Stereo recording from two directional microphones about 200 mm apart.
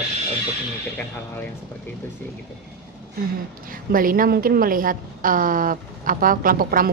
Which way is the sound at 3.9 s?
45° right (ahead or behind).